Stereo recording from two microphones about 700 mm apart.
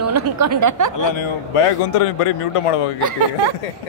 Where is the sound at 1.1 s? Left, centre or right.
Left.